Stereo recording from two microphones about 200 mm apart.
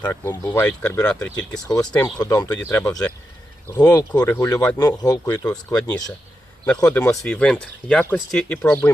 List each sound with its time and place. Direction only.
0.0 s speech: 15° left (ahead or behind)
1.6 s speech: 20° left (ahead or behind)